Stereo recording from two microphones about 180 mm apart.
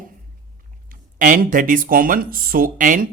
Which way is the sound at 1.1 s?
50° right (ahead or behind).